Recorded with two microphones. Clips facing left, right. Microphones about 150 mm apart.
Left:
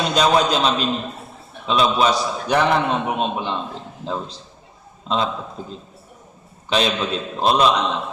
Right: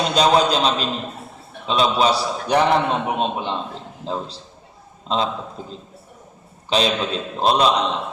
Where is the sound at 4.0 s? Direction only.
30° right (ahead or behind).